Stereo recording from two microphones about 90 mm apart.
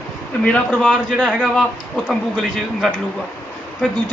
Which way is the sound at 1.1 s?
10° right (ahead or behind).